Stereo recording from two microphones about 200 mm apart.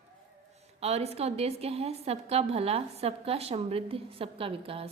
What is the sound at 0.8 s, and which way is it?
A woman's voice, 30° right (ahead or behind).